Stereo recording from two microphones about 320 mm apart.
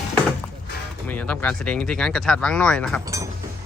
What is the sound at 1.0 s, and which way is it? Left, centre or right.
Speech, centre.